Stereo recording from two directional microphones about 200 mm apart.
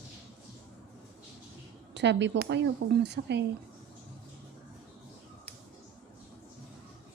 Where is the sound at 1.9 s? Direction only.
60° right (ahead or behind).